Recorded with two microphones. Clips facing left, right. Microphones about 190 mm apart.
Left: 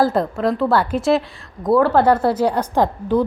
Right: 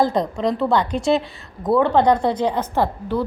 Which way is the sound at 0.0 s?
5° left (ahead or behind).